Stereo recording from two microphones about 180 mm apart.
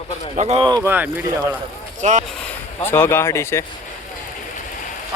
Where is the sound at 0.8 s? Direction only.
10° right (ahead or behind).